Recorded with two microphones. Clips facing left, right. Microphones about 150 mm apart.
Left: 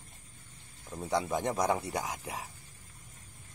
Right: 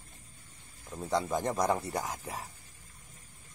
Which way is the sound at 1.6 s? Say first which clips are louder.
Even; 15° left (ahead or behind).